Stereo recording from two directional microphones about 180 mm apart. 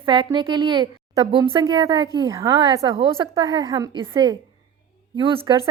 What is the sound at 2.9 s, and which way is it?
Speech, 30° right (ahead or behind).